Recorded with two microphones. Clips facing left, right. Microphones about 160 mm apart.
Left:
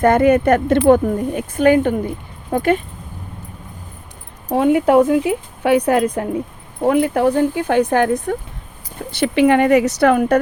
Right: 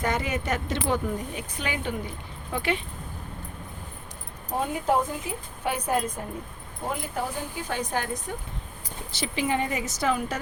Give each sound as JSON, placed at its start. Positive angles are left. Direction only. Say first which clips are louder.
{"t": 0.0, "sound": "speech", "louder": "left 16 dB", "side_deg": 55}
{"t": 4.5, "sound": "speech", "louder": "left 13 dB", "side_deg": 75}